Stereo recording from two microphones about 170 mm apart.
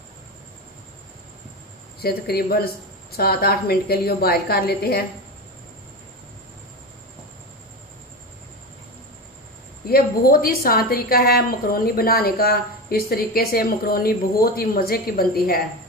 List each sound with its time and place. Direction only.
2.0 s a woman's voice: 65° left (ahead or behind)
9.8 s a woman's voice: 60° left (ahead or behind)